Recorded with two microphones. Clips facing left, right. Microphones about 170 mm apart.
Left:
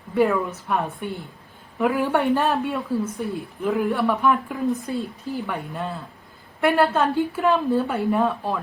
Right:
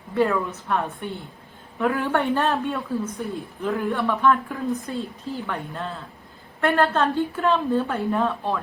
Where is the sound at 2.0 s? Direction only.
15° left (ahead or behind).